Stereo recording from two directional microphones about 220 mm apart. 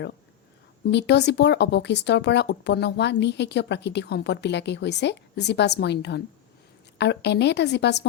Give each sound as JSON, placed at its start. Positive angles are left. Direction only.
{"t": 0.9, "sound": "speech", "side_deg": 50}